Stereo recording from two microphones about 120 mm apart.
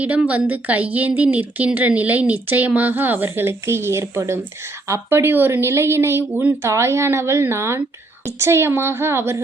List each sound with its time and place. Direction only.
0.0 s a woman's voice: 10° right (ahead or behind)